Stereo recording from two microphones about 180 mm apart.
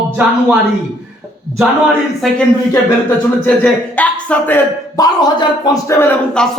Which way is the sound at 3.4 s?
10° left (ahead or behind).